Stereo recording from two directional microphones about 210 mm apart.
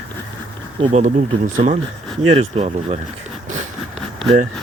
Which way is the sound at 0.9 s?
35° right (ahead or behind).